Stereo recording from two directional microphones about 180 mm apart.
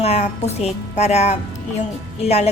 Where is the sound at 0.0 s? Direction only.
35° left (ahead or behind).